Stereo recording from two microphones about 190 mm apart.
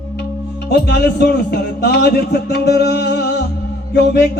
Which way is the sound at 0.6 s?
60° left (ahead or behind).